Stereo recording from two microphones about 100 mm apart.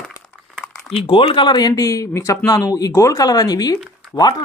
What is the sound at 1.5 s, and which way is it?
Speech, 40° left (ahead or behind).